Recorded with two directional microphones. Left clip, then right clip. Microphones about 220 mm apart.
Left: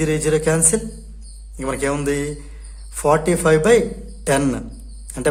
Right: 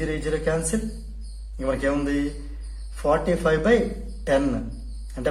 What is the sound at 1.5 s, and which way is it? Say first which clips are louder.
Speech: left 2 dB; 45° left (ahead or behind).